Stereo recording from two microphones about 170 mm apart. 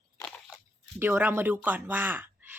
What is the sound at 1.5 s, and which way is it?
Speech, 10° right (ahead or behind).